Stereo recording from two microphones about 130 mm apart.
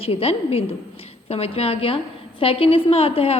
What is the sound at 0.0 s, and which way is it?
A woman's voice, 50° left (ahead or behind).